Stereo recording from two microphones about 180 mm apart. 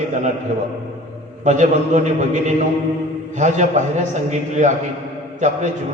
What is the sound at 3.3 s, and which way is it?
Speech, 40° right (ahead or behind).